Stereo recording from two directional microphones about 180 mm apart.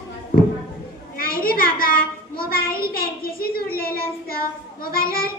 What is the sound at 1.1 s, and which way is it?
A child's voice, 55° left (ahead or behind).